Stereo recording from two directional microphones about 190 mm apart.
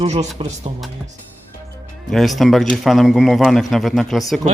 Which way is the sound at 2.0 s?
Centre (ahead or behind).